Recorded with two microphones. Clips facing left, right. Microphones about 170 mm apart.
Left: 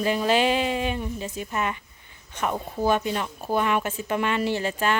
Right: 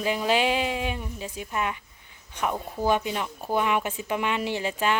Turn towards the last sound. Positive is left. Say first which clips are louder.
# left 2 dB
turn(degrees=-15)  # may be behind; listen again after turning